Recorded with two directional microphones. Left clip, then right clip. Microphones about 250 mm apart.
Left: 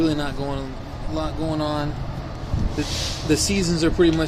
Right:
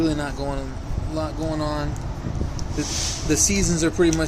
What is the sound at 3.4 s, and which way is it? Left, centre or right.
Speech, left.